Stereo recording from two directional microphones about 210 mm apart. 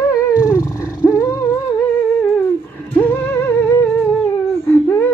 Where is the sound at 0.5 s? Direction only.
15° left (ahead or behind).